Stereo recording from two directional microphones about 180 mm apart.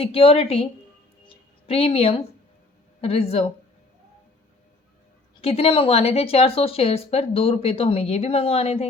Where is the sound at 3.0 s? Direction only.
35° left (ahead or behind).